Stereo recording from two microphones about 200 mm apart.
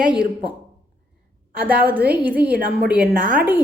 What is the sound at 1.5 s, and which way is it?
Speech, 5° right (ahead or behind).